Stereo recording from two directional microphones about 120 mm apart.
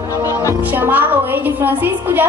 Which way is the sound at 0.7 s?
15° right (ahead or behind).